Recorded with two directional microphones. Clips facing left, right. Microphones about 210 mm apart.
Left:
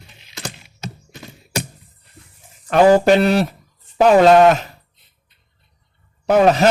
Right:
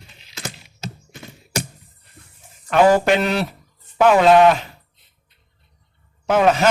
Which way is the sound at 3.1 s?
40° left (ahead or behind).